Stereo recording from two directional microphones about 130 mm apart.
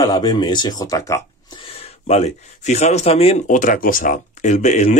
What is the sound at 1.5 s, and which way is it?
Speech, 50° left (ahead or behind).